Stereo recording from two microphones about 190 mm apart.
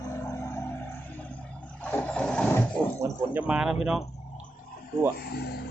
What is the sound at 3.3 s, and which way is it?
Speech, 5° right (ahead or behind).